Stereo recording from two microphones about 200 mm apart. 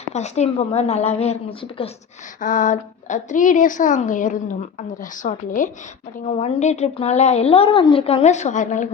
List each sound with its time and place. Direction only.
0.1 s a woman's voice: 35° left (ahead or behind)
2.4 s a woman's voice: 40° left (ahead or behind)